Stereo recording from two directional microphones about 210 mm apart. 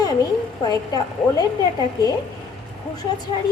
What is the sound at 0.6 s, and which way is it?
Speech, 20° left (ahead or behind).